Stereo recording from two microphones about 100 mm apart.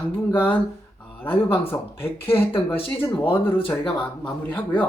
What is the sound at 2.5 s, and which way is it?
Speech, 70° left (ahead or behind).